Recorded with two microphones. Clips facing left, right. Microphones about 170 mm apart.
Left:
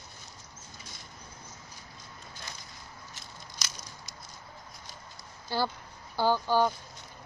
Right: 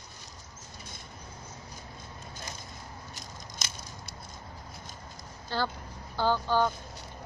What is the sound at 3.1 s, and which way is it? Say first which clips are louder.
Biting: right 3 dB; 40° right (ahead or behind).